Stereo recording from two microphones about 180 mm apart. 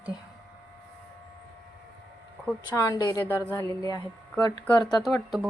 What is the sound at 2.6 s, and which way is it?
Speech, 20° left (ahead or behind).